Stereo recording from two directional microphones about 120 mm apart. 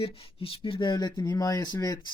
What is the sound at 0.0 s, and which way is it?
Speech, 50° left (ahead or behind).